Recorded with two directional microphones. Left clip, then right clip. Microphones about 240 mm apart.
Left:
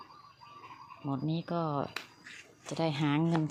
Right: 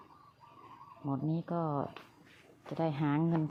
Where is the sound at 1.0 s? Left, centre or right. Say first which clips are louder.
Left 1 dB; centre.